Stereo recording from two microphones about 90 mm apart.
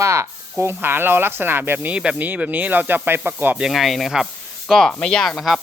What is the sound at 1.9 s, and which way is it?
Speech, 10° right (ahead or behind).